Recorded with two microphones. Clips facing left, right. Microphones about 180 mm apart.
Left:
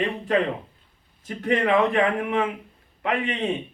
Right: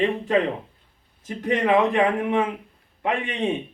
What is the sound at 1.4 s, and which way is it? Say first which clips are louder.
A man's voice: right 1 dB; 25° right (ahead or behind).